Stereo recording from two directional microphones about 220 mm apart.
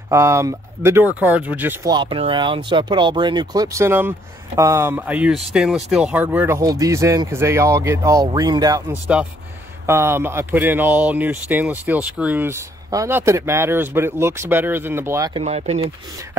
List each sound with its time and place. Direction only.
0.1 s speech: 10° right (ahead or behind)
15.4 s speech: 30° right (ahead or behind)